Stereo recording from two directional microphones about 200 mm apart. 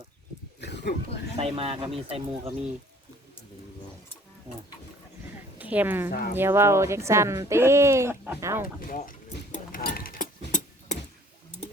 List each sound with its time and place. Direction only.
0.6 s wild animals: 60° left (ahead or behind)
1.4 s speech: 30° right (ahead or behind)
5.5 s a woman's voice: 10° right (ahead or behind)
6.1 s speech: 50° left (ahead or behind)
6.3 s speech: 10° right (ahead or behind)
8.9 s a sound: 40° left (ahead or behind)